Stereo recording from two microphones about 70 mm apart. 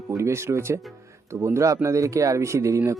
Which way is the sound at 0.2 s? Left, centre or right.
Right.